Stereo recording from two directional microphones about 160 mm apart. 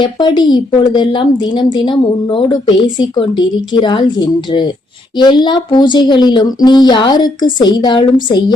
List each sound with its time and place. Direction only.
0.0 s speech: 25° left (ahead or behind)